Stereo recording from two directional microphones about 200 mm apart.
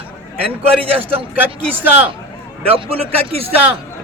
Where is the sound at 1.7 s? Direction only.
10° right (ahead or behind).